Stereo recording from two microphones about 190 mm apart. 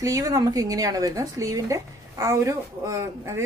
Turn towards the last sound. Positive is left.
turn(degrees=-15)  # may be behind; listen again after turning